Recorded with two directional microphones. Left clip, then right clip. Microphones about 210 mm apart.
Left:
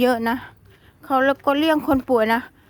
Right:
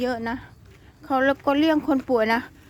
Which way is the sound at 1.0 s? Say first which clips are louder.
Left 3 dB; 20° left (ahead or behind).